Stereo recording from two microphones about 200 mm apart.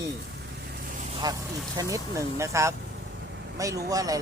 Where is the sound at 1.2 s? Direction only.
20° right (ahead or behind).